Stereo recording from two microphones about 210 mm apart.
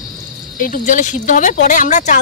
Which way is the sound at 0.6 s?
40° left (ahead or behind).